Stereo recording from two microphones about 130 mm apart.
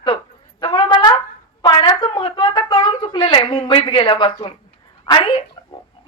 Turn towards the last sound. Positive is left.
turn(degrees=35)  # may be behind; listen again after turning